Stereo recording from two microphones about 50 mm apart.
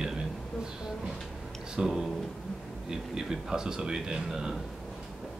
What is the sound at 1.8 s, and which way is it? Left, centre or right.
Speech, centre.